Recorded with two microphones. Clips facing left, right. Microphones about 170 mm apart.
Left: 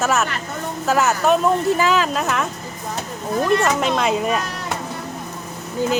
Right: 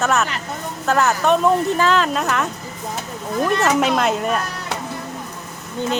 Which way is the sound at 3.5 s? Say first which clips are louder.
Right 1 dB; centre (ahead or behind).